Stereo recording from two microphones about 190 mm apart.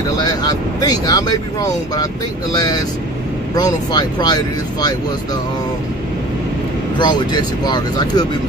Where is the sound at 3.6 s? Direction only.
20° left (ahead or behind).